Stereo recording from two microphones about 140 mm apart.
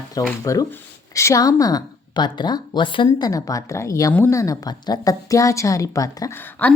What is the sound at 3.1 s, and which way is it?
Speech, 25° left (ahead or behind).